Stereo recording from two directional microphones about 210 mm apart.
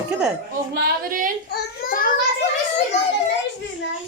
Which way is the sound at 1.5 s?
45° left (ahead or behind).